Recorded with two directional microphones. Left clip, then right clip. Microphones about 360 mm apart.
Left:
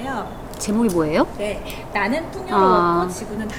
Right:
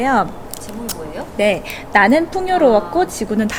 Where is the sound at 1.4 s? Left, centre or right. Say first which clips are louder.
Right 9 dB; right.